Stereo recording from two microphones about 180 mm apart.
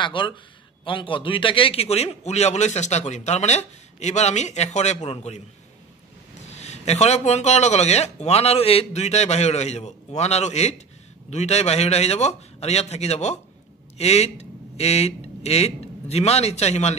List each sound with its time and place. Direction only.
0.0 s a man's voice: 25° left (ahead or behind)
6.5 s a man's voice: 40° left (ahead or behind)